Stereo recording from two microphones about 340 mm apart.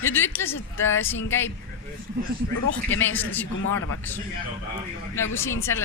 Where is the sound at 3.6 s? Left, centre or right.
Left.